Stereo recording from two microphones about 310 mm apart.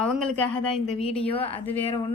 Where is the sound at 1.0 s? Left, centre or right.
Centre.